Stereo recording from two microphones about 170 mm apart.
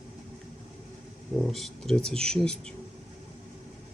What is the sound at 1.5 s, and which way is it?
Speech, centre (ahead or behind).